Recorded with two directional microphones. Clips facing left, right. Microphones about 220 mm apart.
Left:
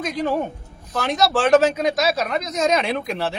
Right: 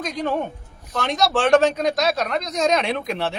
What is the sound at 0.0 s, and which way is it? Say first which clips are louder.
Speech: left 2 dB; 5° left (ahead or behind).